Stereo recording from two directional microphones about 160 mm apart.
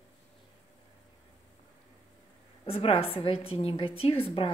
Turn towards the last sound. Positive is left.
turn(degrees=35)  # may be behind; listen again after turning